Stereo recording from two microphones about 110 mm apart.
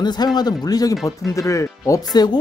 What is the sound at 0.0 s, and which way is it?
Speech, 40° left (ahead or behind).